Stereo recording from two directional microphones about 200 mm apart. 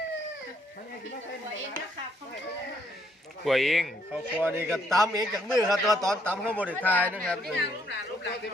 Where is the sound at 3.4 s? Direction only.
Centre (ahead or behind).